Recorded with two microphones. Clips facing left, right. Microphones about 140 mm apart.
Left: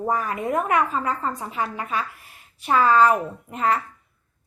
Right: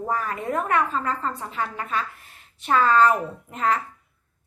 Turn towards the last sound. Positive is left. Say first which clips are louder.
# left 1 dB
turn(degrees=5)  # may be behind; listen again after turning